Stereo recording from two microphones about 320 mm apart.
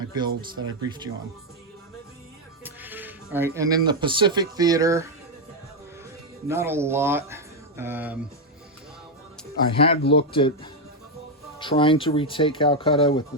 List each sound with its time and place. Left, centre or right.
0.1 s speech: centre
2.6 s speech: centre
6.5 s speech: centre
9.7 s speech: centre